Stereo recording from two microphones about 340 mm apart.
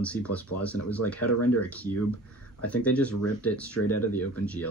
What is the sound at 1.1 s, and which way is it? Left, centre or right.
Speech, left.